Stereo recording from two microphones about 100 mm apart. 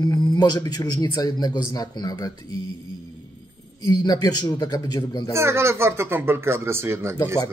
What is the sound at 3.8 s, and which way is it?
A man's voice, 40° left (ahead or behind).